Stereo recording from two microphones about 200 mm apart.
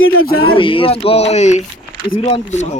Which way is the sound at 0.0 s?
90° left.